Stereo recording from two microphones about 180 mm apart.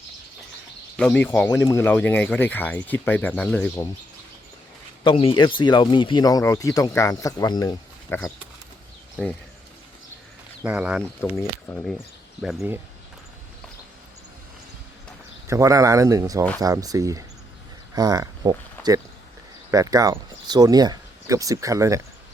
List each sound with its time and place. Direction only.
0.9 s speech: 10° left (ahead or behind)
5.0 s speech: 30° left (ahead or behind); by 8.3 s 15° left (ahead or behind)
10.6 s speech: 10° right (ahead or behind)
11.2 s speech: 10° left (ahead or behind)
11.7 s speech: centre (ahead or behind)
12.5 s speech: 10° right (ahead or behind)
15.4 s speech: 15° right (ahead or behind)